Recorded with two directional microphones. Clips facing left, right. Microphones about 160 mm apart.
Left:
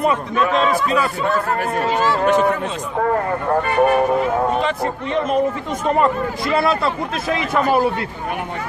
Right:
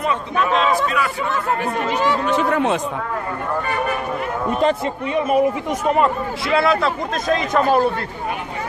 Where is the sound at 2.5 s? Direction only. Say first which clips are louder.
Right 4 dB; 65° right (ahead or behind).